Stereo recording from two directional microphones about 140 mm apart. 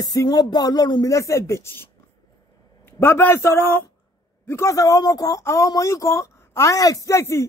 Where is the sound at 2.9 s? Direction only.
15° left (ahead or behind).